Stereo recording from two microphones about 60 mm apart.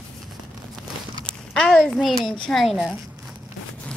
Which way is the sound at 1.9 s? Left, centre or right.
Centre.